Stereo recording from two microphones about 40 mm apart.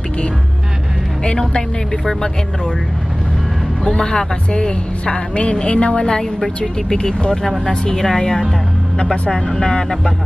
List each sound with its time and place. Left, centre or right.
3.8 s a woman's voice: left